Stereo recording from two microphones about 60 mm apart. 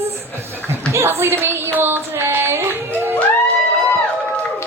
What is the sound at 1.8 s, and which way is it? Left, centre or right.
Singing, right.